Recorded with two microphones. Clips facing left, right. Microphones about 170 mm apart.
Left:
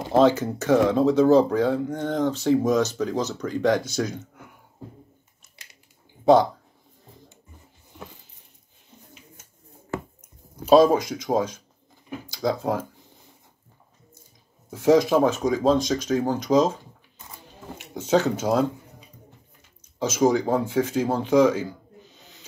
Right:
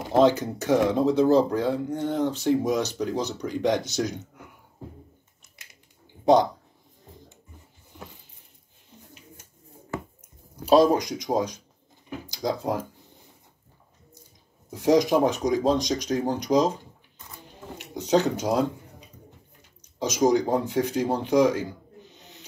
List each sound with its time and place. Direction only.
0.1 s speech: 15° right (ahead or behind)
10.6 s speech: 15° right (ahead or behind)
14.7 s speech: 15° right (ahead or behind)
17.7 s speech: 15° right (ahead or behind)